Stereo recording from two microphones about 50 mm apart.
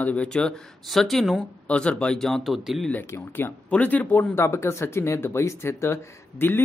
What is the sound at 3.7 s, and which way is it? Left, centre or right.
Speech, left.